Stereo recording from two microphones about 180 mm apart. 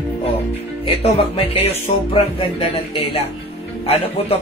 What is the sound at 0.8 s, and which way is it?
Speech, 35° left (ahead or behind).